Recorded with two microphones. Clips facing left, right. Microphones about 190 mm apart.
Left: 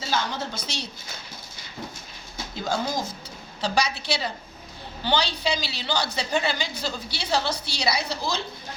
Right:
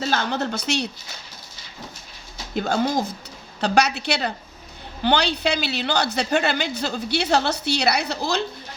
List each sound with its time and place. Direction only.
0.0 s speech: 60° right (ahead or behind)
2.6 s a woman's voice: 60° right (ahead or behind)